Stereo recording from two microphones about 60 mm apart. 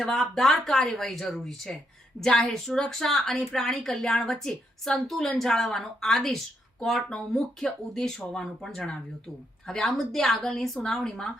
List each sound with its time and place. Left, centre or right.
0.0 s a woman's voice: centre